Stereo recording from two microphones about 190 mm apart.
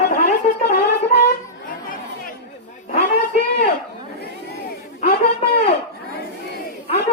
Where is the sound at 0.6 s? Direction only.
60° left (ahead or behind).